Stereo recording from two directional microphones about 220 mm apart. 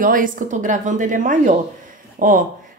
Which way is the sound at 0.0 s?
35° right (ahead or behind).